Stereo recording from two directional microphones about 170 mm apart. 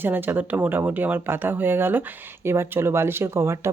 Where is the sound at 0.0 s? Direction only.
10° right (ahead or behind).